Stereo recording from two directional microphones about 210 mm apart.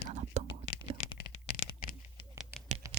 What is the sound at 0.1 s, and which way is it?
Whispering, 35° right (ahead or behind).